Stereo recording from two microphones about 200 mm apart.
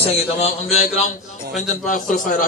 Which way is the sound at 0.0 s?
30° left (ahead or behind).